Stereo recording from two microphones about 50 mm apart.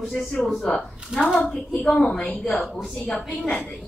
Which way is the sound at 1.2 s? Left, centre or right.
Left.